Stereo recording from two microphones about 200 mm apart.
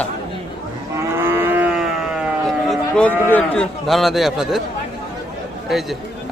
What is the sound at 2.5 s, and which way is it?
Speech, 5° left (ahead or behind).